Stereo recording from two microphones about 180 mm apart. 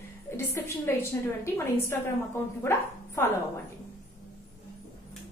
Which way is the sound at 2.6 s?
15° left (ahead or behind).